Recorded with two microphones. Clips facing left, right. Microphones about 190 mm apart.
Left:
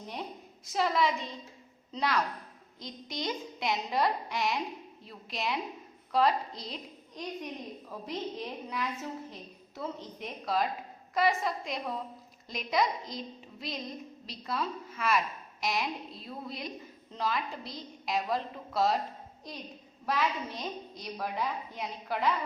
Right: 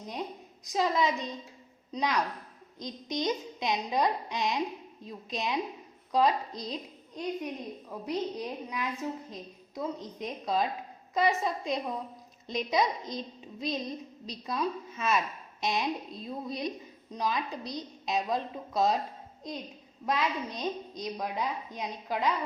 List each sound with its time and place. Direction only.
0.6 s a woman's voice: 15° right (ahead or behind)
20.1 s a woman's voice: 15° right (ahead or behind)